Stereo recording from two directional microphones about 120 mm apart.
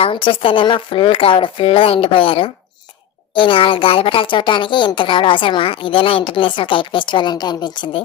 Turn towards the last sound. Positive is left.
turn(degrees=40)  # may be behind; listen again after turning